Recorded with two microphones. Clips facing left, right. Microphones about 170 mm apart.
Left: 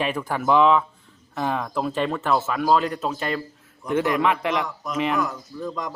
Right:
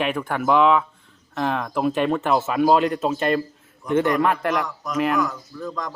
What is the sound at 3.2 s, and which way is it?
Speech, 50° right (ahead or behind).